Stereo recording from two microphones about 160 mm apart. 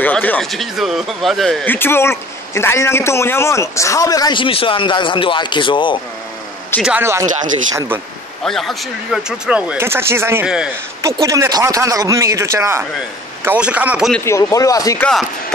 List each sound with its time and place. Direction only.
0.0 s speech: 10° left (ahead or behind)
1.7 s a man's voice: 15° left (ahead or behind); by 5.9 s 30° left (ahead or behind)
6.8 s speech: 10° right (ahead or behind)
8.5 s speech: centre (ahead or behind)
14.2 s a man's voice: 20° left (ahead or behind)